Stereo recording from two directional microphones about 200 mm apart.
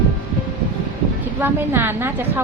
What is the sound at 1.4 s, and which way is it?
Speech, 10° right (ahead or behind).